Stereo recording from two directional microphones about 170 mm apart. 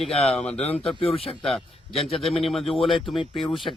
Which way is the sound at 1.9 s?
35° left (ahead or behind).